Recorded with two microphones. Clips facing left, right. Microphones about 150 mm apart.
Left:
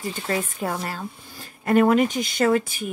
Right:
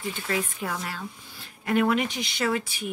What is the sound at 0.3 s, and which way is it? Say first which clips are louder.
Speech: left 4 dB; 40° left (ahead or behind).